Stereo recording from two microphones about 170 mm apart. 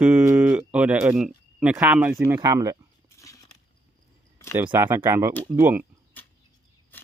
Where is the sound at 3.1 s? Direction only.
20° left (ahead or behind).